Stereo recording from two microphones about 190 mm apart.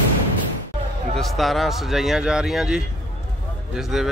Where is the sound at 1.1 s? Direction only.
Centre (ahead or behind).